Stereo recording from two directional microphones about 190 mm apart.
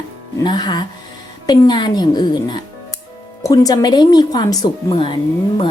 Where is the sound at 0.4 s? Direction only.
20° left (ahead or behind).